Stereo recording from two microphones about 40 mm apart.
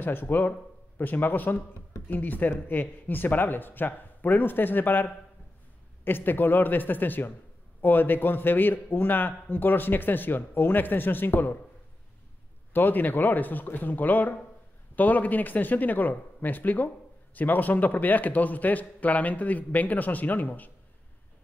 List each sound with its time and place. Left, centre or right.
0.0 s a man's voice: left
12.7 s speech: left